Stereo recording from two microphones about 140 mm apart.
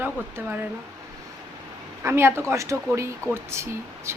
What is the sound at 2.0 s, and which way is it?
A man's voice, 20° right (ahead or behind).